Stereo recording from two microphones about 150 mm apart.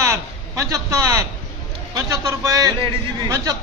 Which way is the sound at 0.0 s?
20° right (ahead or behind).